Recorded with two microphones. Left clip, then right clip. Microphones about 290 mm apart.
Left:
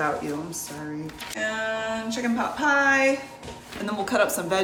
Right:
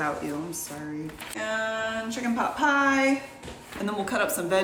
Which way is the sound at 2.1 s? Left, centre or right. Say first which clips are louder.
Even; centre.